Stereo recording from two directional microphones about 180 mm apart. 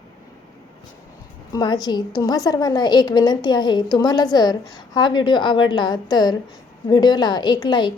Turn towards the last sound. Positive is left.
turn(degrees=25)  # may be behind; listen again after turning